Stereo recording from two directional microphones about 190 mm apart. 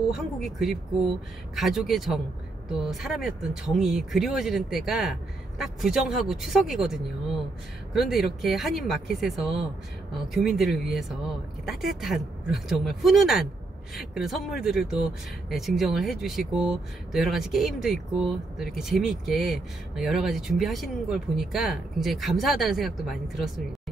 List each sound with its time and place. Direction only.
0.1 s speech: centre (ahead or behind)